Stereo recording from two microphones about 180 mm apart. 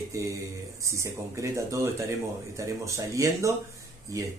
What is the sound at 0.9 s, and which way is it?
Speech, 15° right (ahead or behind).